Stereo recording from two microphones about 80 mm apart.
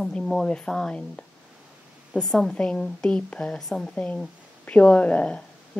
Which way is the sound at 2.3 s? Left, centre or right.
Centre.